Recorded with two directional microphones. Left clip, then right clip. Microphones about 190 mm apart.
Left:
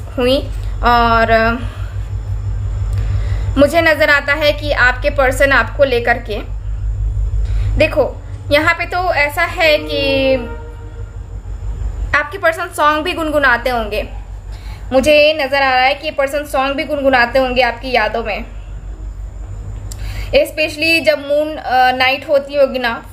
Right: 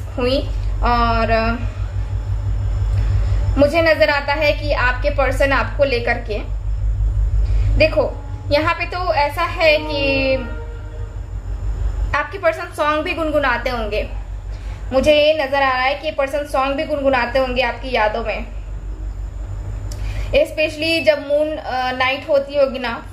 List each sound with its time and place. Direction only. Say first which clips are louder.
0.2 s a woman's voice: left 5 dB; 45° left (ahead or behind)
3.5 s a woman's voice: left 3 dB; 45° left (ahead or behind)
7.7 s a woman's voice: left 2 dB; 40° left (ahead or behind)
12.1 s a woman's voice: left 4 dB; 40° left (ahead or behind)
20.1 s a woman's voice: left 3 dB; 35° left (ahead or behind)